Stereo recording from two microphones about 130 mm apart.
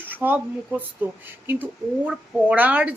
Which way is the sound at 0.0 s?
15° right (ahead or behind).